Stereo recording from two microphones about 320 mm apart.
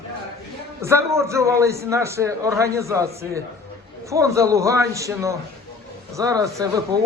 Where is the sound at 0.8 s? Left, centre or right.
Centre.